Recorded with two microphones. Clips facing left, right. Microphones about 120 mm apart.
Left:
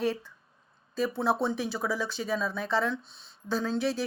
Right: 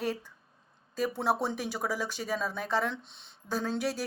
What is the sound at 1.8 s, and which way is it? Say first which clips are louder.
Speech: left 1 dB; 45° right (ahead or behind).